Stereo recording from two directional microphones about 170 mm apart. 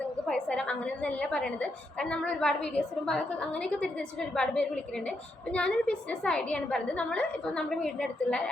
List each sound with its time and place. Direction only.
0.0 s a woman's voice: 5° left (ahead or behind)